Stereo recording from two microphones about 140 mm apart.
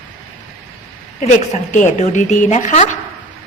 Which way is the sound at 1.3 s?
65° left (ahead or behind).